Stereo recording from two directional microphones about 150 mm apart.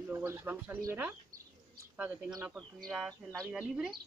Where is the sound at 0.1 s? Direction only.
15° right (ahead or behind).